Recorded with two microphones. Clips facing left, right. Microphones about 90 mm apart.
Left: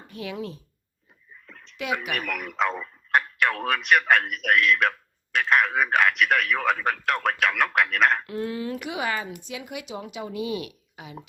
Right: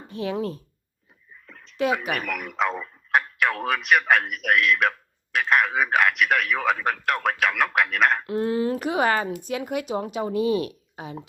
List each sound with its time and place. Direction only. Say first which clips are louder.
0.1 s speech: right 6 dB; 35° right (ahead or behind)
1.5 s a sound: right 1 dB; centre (ahead or behind)
2.0 s speech: right 2 dB; centre (ahead or behind)
8.3 s speech: right 6 dB; 30° right (ahead or behind)